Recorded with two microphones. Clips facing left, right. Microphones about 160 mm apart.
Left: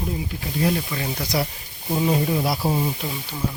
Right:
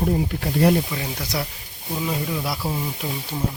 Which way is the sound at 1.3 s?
5° left (ahead or behind).